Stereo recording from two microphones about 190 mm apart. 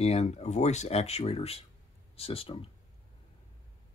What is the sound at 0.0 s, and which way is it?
Speech, 35° left (ahead or behind).